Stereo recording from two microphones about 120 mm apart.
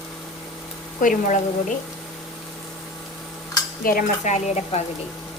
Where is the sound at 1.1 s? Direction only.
90° left.